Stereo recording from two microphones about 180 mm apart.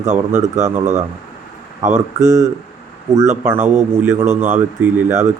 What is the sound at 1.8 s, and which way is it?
Speech, 40° right (ahead or behind).